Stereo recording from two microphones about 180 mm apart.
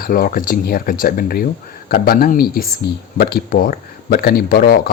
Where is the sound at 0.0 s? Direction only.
50° left (ahead or behind).